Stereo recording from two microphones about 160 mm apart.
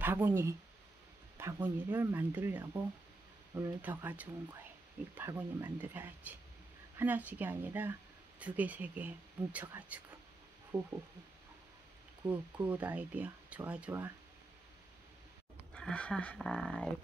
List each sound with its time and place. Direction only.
0.0 s speech: 10° right (ahead or behind)
12.6 s speech: 10° right (ahead or behind)
15.7 s speech: 5° left (ahead or behind)